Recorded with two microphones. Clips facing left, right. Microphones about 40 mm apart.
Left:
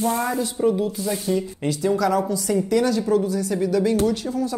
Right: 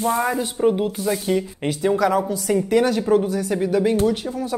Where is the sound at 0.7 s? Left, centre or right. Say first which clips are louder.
Right 2 dB; right.